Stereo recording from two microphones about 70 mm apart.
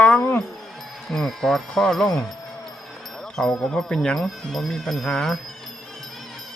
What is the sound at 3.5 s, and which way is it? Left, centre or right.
Speech, centre.